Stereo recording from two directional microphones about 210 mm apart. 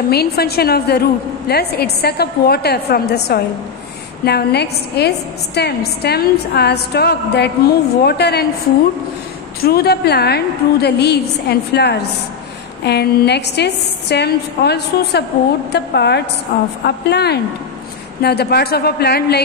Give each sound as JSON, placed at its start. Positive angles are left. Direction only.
{"t": 0.1, "sound": "a woman's voice", "side_deg": 50}
{"t": 9.6, "sound": "a woman's voice", "side_deg": 45}